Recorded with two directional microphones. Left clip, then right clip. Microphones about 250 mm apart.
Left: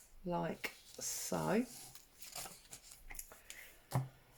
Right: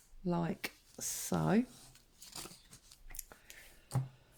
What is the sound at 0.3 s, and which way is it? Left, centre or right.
Speech, right.